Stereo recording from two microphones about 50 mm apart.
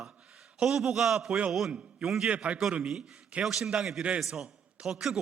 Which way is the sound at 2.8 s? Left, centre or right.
Centre.